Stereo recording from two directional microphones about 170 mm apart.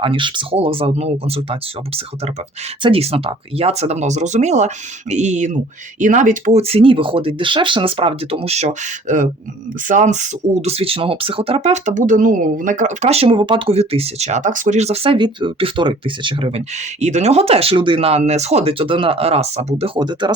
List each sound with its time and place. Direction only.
0.0 s speech: 30° right (ahead or behind)
20.0 s speech: 25° right (ahead or behind)